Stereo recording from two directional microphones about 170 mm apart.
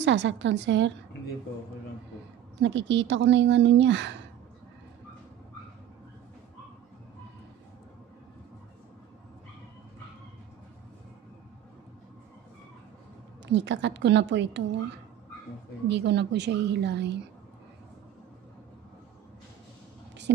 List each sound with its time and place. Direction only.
0.0 s a woman's voice: 90° right
2.6 s a woman's voice: 90° right
13.5 s a woman's voice: 90° right
15.9 s a woman's voice: 80° right
20.3 s a woman's voice: 90° right